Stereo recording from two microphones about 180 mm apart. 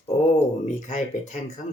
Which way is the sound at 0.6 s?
40° left (ahead or behind).